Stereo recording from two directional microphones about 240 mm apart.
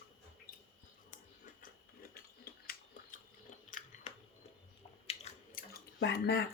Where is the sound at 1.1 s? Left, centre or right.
Left.